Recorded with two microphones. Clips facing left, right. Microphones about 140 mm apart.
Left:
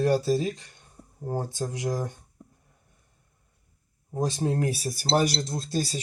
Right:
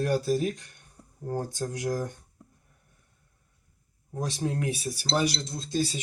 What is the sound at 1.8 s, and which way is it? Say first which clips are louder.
Speech: even; 20° left (ahead or behind).